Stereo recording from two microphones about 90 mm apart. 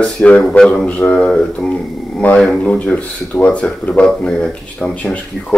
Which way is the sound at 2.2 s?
20° left (ahead or behind).